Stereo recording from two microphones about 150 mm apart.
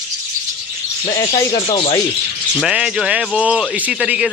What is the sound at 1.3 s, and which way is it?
Speech, 40° left (ahead or behind).